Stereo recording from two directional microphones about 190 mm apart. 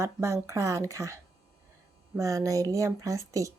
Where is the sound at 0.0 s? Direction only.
15° right (ahead or behind).